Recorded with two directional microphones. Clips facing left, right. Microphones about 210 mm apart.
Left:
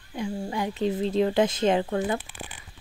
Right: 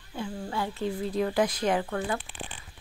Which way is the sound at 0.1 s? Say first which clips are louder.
Left 3 dB; 15° left (ahead or behind).